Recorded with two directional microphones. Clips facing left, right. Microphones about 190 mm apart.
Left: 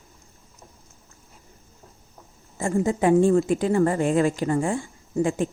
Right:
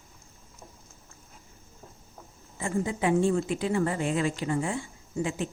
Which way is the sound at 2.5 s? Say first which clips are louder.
Left 6 dB; 45° left (ahead or behind).